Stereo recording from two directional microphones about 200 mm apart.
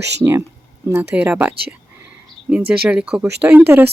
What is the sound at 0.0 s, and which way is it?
Speech, 60° right (ahead or behind).